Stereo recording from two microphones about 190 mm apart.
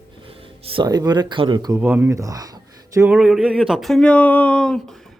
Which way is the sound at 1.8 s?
10° right (ahead or behind).